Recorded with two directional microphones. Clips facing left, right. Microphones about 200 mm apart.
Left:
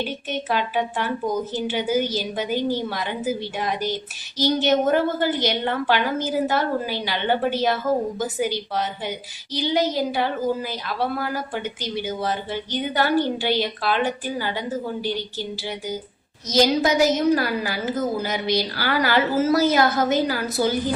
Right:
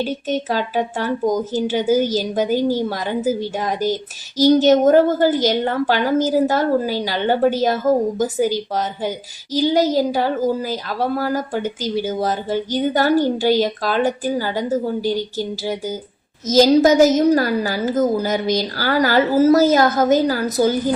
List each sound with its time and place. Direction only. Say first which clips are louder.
0.0 s a woman's voice: right 6 dB; 40° right (ahead or behind)